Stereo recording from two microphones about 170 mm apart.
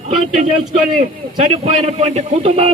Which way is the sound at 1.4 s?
40° right (ahead or behind).